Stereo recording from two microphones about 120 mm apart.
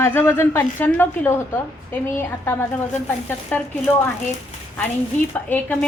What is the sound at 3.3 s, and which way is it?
Speech, 15° left (ahead or behind).